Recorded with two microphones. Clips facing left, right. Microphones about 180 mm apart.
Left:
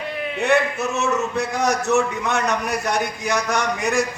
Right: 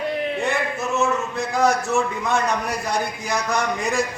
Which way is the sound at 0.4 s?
75° left (ahead or behind).